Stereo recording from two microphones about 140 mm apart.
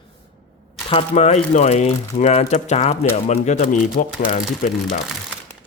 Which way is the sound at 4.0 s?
90° left.